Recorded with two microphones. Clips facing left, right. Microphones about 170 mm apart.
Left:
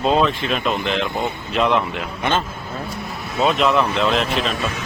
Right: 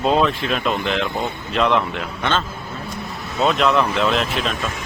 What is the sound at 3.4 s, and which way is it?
Speech, centre (ahead or behind).